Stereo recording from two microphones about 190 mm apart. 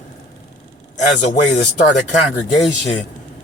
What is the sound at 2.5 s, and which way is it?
Speech, 40° left (ahead or behind).